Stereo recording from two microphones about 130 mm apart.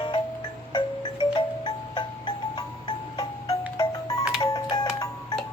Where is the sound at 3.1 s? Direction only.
30° left (ahead or behind).